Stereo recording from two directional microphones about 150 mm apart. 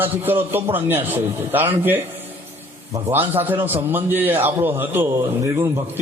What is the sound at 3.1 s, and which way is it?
A man's voice, 15° right (ahead or behind).